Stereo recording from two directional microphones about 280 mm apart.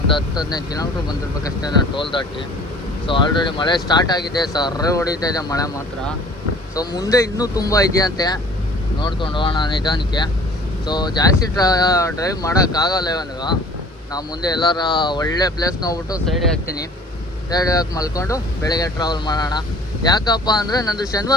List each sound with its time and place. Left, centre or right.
0.3 s speech: centre
17.5 s speech: centre